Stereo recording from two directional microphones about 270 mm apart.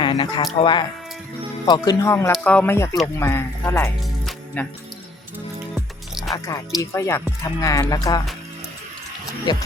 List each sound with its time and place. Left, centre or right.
0.0 s a sound: centre
0.6 s speech: centre
5.7 s music: centre
6.3 s speech: centre
9.5 s speech: centre